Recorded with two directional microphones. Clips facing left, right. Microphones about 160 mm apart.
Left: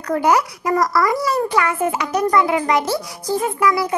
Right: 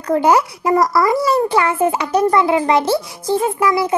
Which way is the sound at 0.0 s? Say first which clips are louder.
Right 3 dB; 25° right (ahead or behind).